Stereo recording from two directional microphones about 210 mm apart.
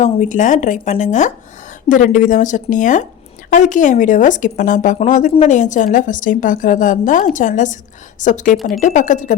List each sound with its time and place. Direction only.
0.0 s speech: 35° left (ahead or behind)